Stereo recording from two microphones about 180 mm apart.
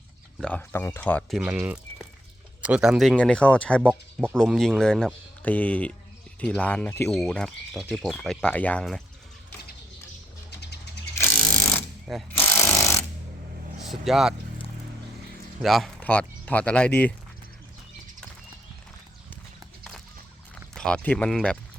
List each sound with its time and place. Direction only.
0.3 s speech: 5° left (ahead or behind)
1.4 s speech: 5° right (ahead or behind); by 7.1 s 10° left (ahead or behind)
7.1 s speech: centre (ahead or behind)
10.5 s bird: 65° left (ahead or behind)
11.2 s a sound: 10° left (ahead or behind)
12.3 s jackhammer: 10° left (ahead or behind)
13.8 s speech: centre (ahead or behind)
15.6 s speech: centre (ahead or behind)
20.7 s speech: 5° left (ahead or behind)